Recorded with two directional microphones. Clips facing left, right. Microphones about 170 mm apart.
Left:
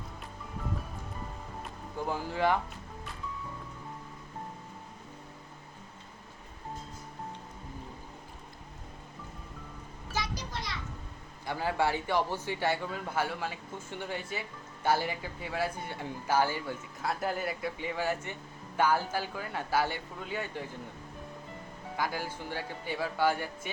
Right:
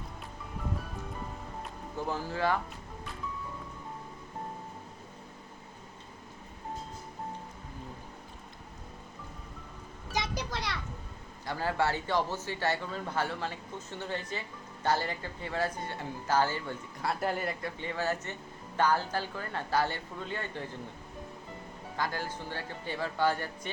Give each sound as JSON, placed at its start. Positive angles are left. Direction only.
{"t": 2.0, "sound": "a man's voice", "side_deg": 15}
{"t": 10.3, "sound": "children playing", "side_deg": -70}
{"t": 11.4, "sound": "a man's voice", "side_deg": 15}
{"t": 17.0, "sound": "a man's voice", "side_deg": 0}
{"t": 21.9, "sound": "a man's voice", "side_deg": 10}